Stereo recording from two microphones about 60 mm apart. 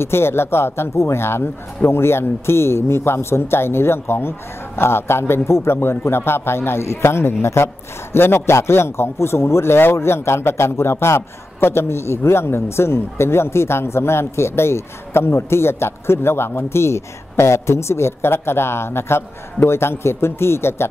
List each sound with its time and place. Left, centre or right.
0.0 s a man's voice: left